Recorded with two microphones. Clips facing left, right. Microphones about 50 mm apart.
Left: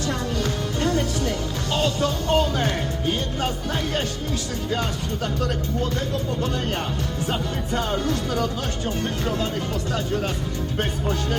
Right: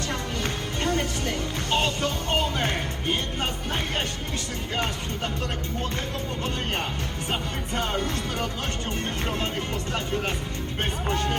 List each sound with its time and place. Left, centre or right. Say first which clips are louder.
0.1 s music: left 4 dB; right
4.7 s music: left 2 dB; right
7.3 s music: left 2 dB; right
10.8 s music: left 1 dB; right